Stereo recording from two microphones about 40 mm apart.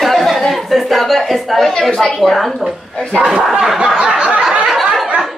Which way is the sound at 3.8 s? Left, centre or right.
Centre.